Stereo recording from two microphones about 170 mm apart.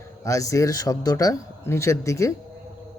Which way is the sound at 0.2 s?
20° left (ahead or behind).